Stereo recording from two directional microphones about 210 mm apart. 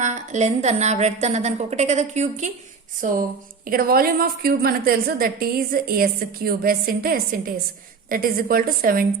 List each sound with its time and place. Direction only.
0.0 s a woman's voice: 35° right (ahead or behind)